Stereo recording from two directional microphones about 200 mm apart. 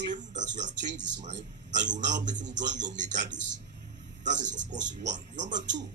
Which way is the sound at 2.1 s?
40° right (ahead or behind).